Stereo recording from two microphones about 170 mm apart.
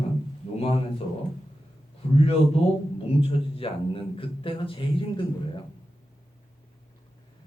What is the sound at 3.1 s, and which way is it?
A man's voice, 35° left (ahead or behind).